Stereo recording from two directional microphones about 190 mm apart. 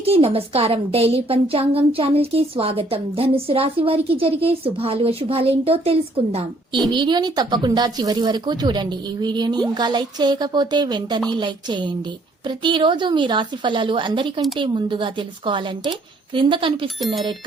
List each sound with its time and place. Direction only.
0.0 s a woman's voice: 30° right (ahead or behind)